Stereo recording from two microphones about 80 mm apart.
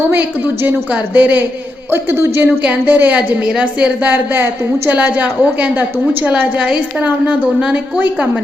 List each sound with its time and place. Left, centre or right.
0.1 s a woman's voice: right
1.9 s a woman's voice: right
2.6 s a woman's voice: centre